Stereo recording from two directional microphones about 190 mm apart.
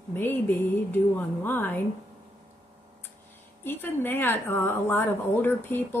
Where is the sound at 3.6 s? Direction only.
10° left (ahead or behind).